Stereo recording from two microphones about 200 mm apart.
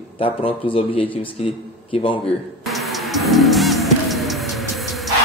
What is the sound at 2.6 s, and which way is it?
Music, centre (ahead or behind).